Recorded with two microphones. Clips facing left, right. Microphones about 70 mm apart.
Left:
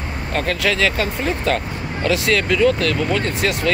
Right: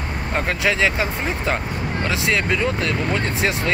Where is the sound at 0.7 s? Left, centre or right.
Centre.